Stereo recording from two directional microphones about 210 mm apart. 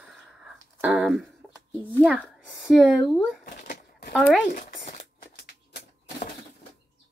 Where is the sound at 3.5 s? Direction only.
45° left (ahead or behind).